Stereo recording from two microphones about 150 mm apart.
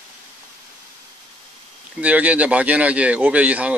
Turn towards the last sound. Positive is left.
turn(degrees=-10)  # may be behind; listen again after turning